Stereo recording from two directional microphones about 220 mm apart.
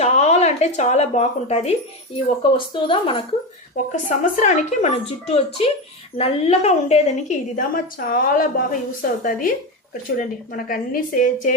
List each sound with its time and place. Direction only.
0.0 s speech: 30° left (ahead or behind)
3.8 s a woman's voice: 35° left (ahead or behind)